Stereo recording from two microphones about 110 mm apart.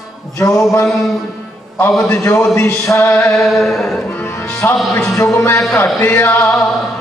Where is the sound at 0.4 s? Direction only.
25° left (ahead or behind).